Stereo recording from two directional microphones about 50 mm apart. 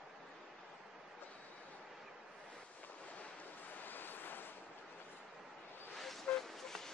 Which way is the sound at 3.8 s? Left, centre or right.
Left.